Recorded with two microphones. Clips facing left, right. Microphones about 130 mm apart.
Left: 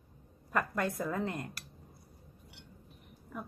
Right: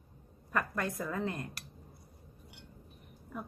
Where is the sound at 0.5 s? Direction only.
20° left (ahead or behind).